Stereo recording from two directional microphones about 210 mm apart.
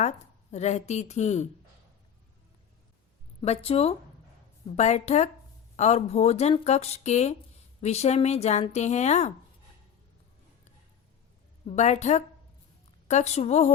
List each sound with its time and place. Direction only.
0.5 s speech: 30° left (ahead or behind)
3.4 s speech: 30° left (ahead or behind)
11.6 s speech: 35° left (ahead or behind)